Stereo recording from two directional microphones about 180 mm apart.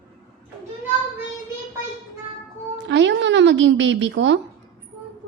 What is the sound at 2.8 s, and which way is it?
A woman's voice, 80° right.